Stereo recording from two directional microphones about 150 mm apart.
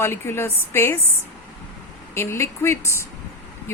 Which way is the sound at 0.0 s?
15° left (ahead or behind).